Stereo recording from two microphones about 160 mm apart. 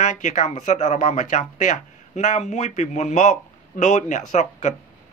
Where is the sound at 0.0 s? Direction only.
50° left (ahead or behind).